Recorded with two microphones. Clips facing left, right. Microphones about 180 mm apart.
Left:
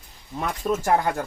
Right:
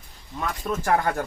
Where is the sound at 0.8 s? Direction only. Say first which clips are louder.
Right 1 dB; 15° left (ahead or behind).